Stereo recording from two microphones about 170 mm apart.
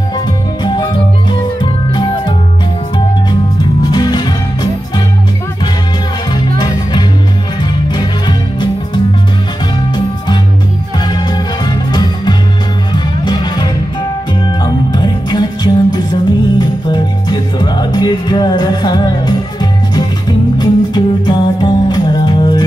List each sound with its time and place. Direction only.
0.7 s music: 25° left (ahead or behind)
3.8 s music: 25° left (ahead or behind)
6.6 s music: 25° left (ahead or behind)